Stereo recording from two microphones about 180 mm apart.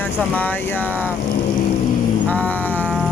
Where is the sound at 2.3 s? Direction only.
10° left (ahead or behind).